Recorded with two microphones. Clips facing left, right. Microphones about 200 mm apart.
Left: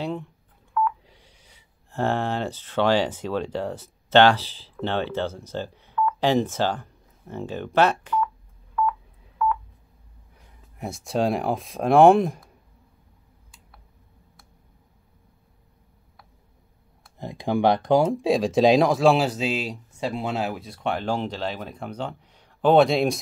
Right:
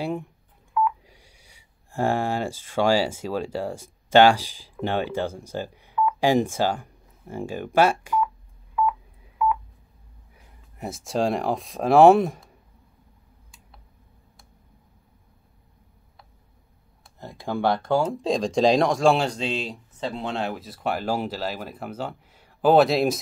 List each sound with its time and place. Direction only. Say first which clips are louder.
0.0 s telephone dialing: right 1 dB; 10° right (ahead or behind)
0.7 s speech: right 1 dB; 10° right (ahead or behind)
8.8 s telephone dialing: right 1 dB; 10° right (ahead or behind)
10.3 s speech: even; centre (ahead or behind)
17.2 s speech: left 4 dB; 15° left (ahead or behind)
18.3 s speech: left 2 dB; 5° left (ahead or behind)